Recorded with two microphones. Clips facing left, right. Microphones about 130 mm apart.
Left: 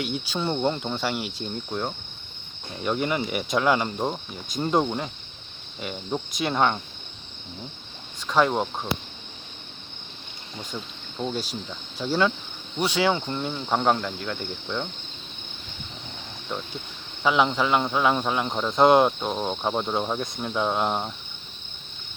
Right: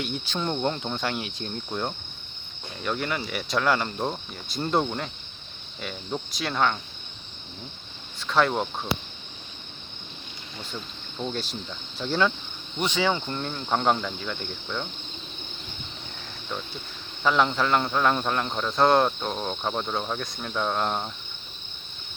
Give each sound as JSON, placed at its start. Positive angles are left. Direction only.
{"t": 0.0, "sound": "speech", "side_deg": 10}
{"t": 8.3, "sound": "speech", "side_deg": 15}
{"t": 10.6, "sound": "speech", "side_deg": 10}
{"t": 17.2, "sound": "speech", "side_deg": 10}